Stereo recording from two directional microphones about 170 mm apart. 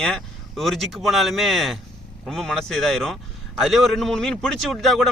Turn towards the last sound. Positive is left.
turn(degrees=0)  # may be behind; listen again after turning